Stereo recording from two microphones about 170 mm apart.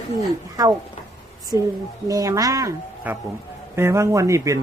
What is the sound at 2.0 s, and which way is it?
A man's voice, 20° right (ahead or behind).